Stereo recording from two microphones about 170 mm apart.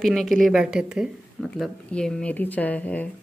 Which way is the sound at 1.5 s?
5° left (ahead or behind).